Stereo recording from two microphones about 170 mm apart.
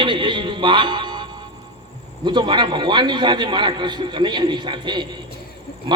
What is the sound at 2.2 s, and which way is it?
A man's voice, 25° right (ahead or behind).